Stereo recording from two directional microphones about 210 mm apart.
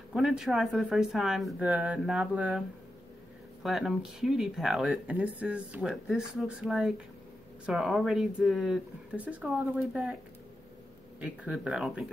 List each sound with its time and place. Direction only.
0.1 s speech: 5° right (ahead or behind)
3.6 s speech: centre (ahead or behind)
11.1 s speech: 5° right (ahead or behind)